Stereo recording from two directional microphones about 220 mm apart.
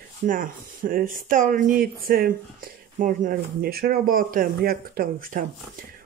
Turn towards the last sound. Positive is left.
turn(degrees=-40)  # may be behind; listen again after turning